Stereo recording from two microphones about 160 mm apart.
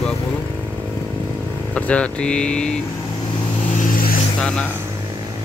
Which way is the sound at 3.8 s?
65° left (ahead or behind).